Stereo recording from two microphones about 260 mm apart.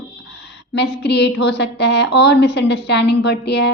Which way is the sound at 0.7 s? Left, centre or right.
Left.